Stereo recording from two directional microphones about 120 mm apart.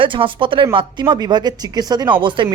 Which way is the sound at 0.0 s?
45° right (ahead or behind).